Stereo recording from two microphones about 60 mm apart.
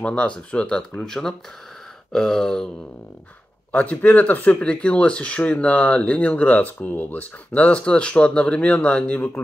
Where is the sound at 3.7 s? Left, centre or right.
Left.